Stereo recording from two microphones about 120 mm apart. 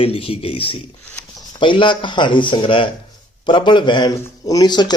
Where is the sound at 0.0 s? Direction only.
50° left (ahead or behind).